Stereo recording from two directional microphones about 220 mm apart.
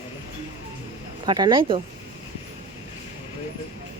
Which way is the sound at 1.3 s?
20° right (ahead or behind).